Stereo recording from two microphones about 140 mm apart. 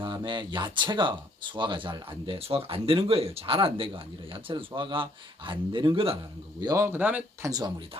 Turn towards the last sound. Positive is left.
turn(degrees=-25)  # may be behind; listen again after turning